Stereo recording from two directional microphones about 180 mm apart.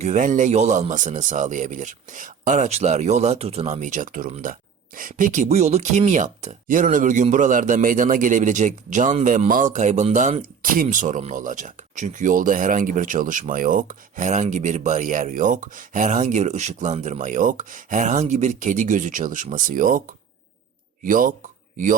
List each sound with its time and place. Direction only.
0.0 s speech: 40° right (ahead or behind)
21.0 s speech: 50° right (ahead or behind)